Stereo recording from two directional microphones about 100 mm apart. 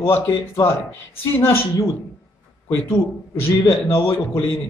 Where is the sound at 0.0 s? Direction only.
25° left (ahead or behind).